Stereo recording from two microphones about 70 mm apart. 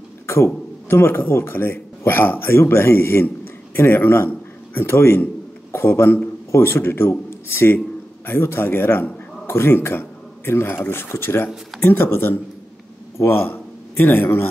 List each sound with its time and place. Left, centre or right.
0.8 s a man's voice: left